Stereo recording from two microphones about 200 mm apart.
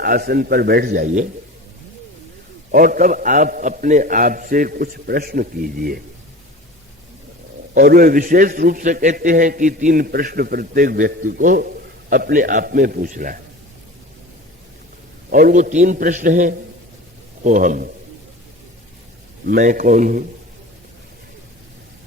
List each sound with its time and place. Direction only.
0.0 s a man's voice: 50° right (ahead or behind)
2.7 s a man's voice: 45° right (ahead or behind)
7.7 s a man's voice: 50° right (ahead or behind)
15.3 s a man's voice: 45° right (ahead or behind)
19.5 s a man's voice: 45° right (ahead or behind)